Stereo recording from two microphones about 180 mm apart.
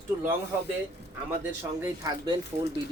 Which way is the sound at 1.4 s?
10° right (ahead or behind).